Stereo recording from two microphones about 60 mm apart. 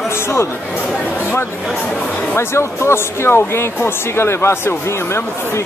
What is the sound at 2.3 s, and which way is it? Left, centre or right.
Speech, left.